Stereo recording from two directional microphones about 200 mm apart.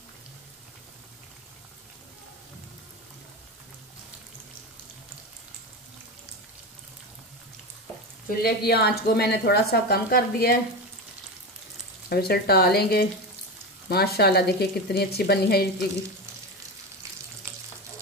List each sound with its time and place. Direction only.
8.3 s a woman's voice: 50° left (ahead or behind)
12.1 s a woman's voice: 50° left (ahead or behind)